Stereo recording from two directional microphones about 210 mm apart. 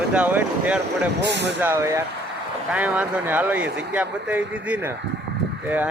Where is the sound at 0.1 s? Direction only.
10° right (ahead or behind).